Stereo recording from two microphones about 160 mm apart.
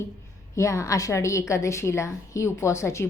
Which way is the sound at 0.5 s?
20° left (ahead or behind).